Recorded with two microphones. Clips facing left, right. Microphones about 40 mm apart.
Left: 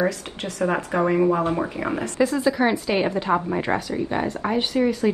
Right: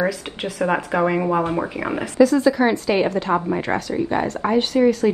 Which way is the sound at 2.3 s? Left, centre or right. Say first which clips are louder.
Right 4 dB; centre.